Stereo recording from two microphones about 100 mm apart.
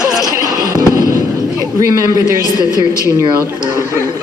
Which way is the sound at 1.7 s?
40° right (ahead or behind).